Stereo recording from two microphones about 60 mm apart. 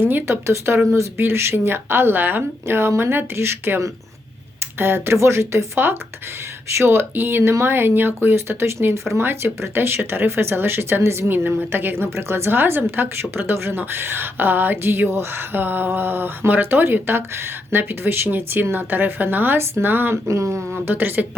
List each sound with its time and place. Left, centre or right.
0.0 s a woman's voice: right
0.4 s a woman's voice: right
4.8 s a woman's voice: right
5.1 s a woman's voice: right
11.3 s a woman's voice: right
20.2 s speech: right
20.7 s a woman's voice: right